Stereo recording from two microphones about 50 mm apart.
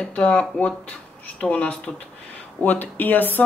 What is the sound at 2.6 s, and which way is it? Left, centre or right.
Speech, left.